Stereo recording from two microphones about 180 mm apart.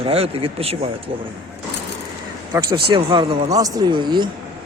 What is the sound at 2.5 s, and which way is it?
Speech, 25° right (ahead or behind).